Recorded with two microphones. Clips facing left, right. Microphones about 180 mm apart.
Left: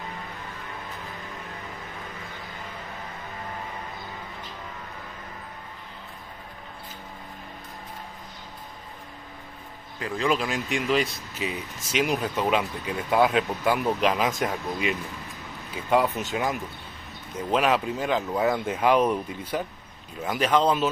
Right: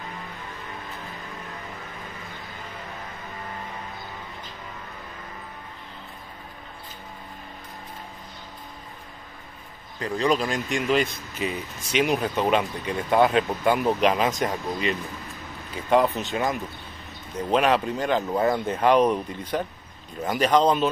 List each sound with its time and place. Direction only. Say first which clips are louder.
9.9 s speech: right 2 dB; 5° left (ahead or behind)